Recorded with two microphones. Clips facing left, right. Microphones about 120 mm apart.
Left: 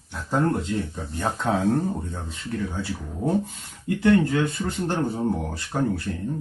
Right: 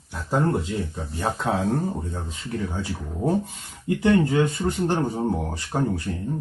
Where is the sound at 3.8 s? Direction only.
15° right (ahead or behind).